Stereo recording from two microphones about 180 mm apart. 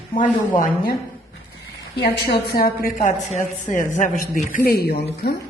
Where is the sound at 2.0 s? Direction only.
65° left (ahead or behind).